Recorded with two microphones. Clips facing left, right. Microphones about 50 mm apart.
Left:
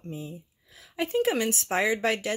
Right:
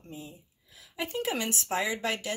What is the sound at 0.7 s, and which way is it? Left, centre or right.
Speech, left.